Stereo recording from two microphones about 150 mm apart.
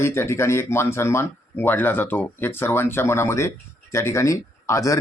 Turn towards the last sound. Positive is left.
turn(degrees=20)  # may be behind; listen again after turning